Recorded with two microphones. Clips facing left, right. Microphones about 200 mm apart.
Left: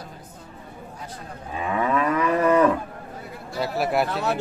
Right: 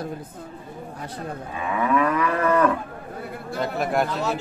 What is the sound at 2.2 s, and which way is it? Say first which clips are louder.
Speech: left 2 dB; 20° left (ahead or behind).